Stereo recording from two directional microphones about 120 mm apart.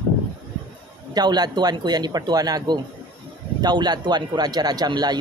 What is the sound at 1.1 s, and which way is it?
A man's voice, 35° right (ahead or behind).